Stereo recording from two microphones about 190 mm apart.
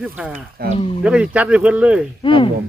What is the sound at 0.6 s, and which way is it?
Speech, 55° right (ahead or behind).